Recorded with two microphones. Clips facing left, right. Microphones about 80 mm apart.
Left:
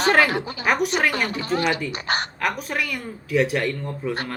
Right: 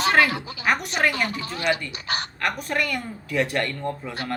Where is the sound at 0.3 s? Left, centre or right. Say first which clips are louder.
Left 4 dB; left.